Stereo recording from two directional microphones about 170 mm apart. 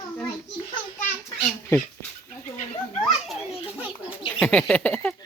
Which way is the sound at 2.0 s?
15° left (ahead or behind).